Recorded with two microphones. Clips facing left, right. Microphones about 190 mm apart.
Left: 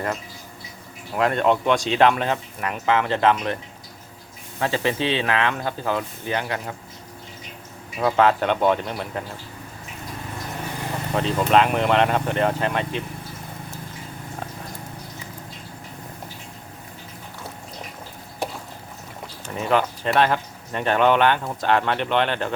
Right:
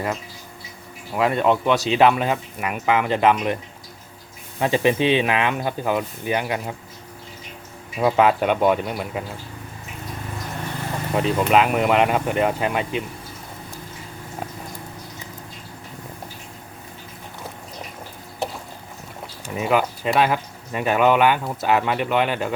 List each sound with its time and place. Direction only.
1.1 s speech: 5° right (ahead or behind)
4.6 s speech: 15° right (ahead or behind)
8.0 s speech: 15° right (ahead or behind)
11.1 s speech: 10° right (ahead or behind)
19.5 s speech: 10° right (ahead or behind)